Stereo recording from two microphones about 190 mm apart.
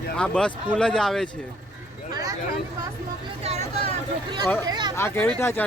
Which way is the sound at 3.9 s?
25° right (ahead or behind).